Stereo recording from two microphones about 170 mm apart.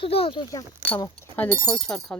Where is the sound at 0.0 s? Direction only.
35° left (ahead or behind).